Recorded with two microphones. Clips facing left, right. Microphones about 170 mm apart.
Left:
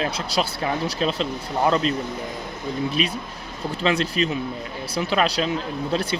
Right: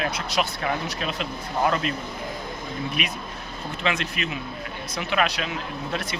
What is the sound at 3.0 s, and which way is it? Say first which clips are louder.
Speech: left 5 dB; 30° left (ahead or behind).